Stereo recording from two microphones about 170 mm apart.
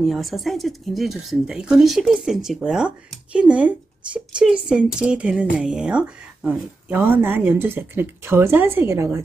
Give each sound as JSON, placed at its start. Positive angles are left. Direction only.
{"t": 0.0, "sound": "speech", "side_deg": 0}